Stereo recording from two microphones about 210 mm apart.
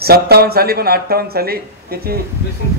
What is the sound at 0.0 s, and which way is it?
Speech, 45° right (ahead or behind).